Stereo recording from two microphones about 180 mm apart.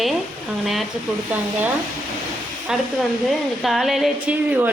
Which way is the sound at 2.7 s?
5° right (ahead or behind).